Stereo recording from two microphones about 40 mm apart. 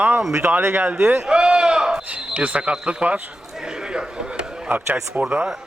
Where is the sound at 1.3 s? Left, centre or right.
Right.